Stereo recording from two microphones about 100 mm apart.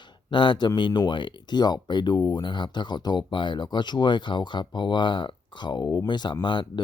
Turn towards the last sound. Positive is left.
turn(degrees=50)  # may be behind; listen again after turning